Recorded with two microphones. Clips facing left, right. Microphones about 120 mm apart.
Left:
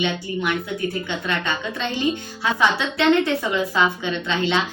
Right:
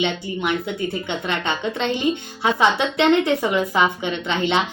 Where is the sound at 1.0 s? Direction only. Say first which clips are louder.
Right 1 dB; 20° right (ahead or behind).